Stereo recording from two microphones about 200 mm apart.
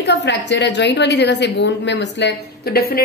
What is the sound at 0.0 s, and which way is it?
A woman's voice, 60° left (ahead or behind).